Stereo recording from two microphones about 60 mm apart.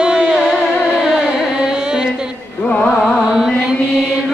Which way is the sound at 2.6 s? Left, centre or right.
Left.